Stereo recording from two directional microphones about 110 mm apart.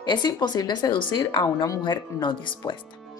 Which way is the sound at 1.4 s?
30° left (ahead or behind).